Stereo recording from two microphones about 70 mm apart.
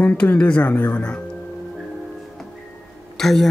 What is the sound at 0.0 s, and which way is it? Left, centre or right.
Speech, left.